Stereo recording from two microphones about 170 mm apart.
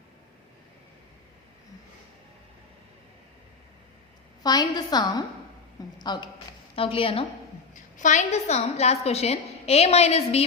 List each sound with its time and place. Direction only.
4.4 s a woman's voice: 25° left (ahead or behind)
7.9 s a woman's voice: 45° left (ahead or behind)